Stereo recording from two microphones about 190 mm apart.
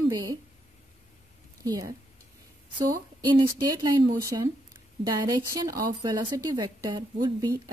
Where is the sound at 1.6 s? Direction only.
20° right (ahead or behind).